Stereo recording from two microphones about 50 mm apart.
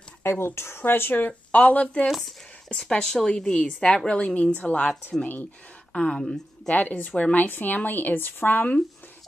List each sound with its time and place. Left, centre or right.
0.2 s speech: left
2.0 s speech: centre
2.7 s a woman's voice: centre
5.9 s a woman's voice: centre
6.7 s speech: left
7.4 s speech: left